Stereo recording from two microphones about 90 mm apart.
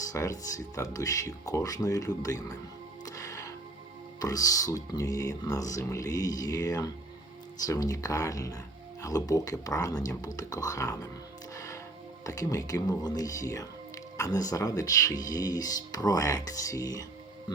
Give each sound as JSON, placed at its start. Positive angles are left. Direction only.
{"t": 0.0, "sound": "speech", "side_deg": 40}
{"t": 3.0, "sound": "music", "side_deg": 40}
{"t": 4.2, "sound": "speech", "side_deg": 40}
{"t": 11.5, "sound": "music", "side_deg": 35}
{"t": 12.2, "sound": "speech", "side_deg": 40}